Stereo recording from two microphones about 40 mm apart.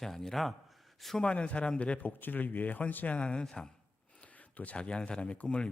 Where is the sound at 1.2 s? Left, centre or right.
Left.